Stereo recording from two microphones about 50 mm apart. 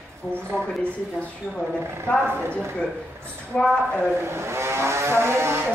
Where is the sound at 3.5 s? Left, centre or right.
Centre.